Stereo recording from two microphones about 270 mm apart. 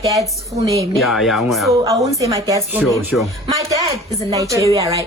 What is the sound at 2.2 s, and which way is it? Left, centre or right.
Speech, centre.